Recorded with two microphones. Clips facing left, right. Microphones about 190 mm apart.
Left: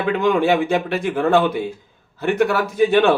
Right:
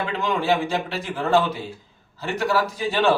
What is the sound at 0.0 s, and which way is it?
Speech, 55° left (ahead or behind).